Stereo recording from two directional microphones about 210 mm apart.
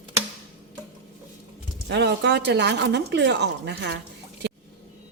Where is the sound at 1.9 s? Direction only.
55° right (ahead or behind).